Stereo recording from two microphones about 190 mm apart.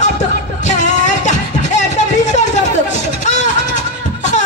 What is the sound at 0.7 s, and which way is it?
Music, 40° left (ahead or behind).